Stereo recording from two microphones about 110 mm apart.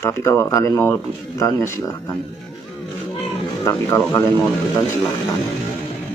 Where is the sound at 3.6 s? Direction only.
30° left (ahead or behind).